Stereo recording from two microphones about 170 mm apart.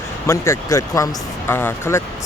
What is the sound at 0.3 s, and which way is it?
Speech, 15° left (ahead or behind).